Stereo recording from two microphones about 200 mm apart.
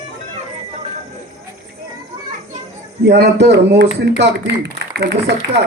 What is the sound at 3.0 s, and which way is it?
Speech, 55° right (ahead or behind).